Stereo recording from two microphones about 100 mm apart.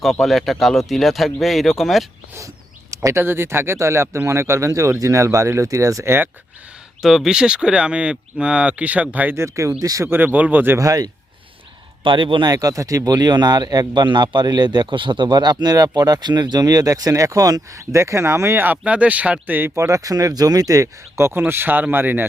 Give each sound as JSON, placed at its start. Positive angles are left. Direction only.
{"t": 0.0, "sound": "speech", "side_deg": 0}
{"t": 2.9, "sound": "speech", "side_deg": -30}
{"t": 7.0, "sound": "speech", "side_deg": -5}
{"t": 9.3, "sound": "speech", "side_deg": -30}
{"t": 10.1, "sound": "speech", "side_deg": -20}
{"t": 10.8, "sound": "speech", "side_deg": -35}
{"t": 12.0, "sound": "speech", "side_deg": -55}
{"t": 12.5, "sound": "speech", "side_deg": -35}